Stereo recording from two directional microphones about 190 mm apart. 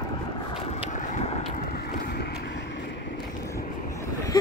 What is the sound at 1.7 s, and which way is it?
Vehicle, 55° left (ahead or behind).